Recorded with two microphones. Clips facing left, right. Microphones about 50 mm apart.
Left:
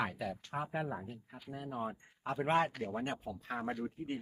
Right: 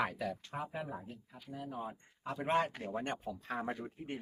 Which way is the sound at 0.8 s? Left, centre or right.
Left.